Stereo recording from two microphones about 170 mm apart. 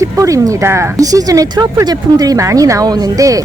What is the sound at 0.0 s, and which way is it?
Speech, 20° right (ahead or behind).